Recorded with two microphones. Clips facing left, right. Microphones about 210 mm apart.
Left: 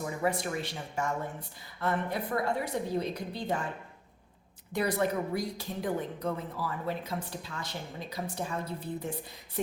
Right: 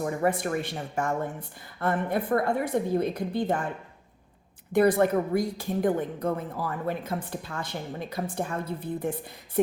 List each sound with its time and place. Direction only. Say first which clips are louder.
0.0 s a woman's voice: right 5 dB; 50° right (ahead or behind)
4.7 s a woman's voice: right 8 dB; 55° right (ahead or behind)